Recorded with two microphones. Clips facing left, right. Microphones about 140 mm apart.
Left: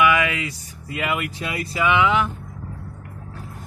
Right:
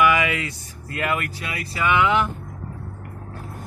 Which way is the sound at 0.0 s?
Centre (ahead or behind).